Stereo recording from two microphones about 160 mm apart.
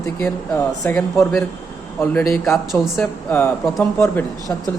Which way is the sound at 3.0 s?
10° left (ahead or behind).